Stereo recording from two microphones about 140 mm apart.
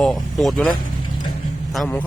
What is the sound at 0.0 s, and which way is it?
Speech, centre (ahead or behind).